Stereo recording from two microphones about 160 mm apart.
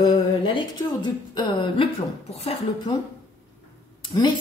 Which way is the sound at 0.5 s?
30° left (ahead or behind).